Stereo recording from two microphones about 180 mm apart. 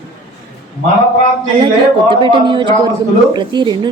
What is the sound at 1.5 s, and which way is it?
A woman's voice, 30° right (ahead or behind).